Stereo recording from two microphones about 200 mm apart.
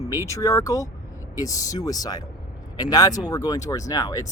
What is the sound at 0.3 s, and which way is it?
Speech, 15° left (ahead or behind).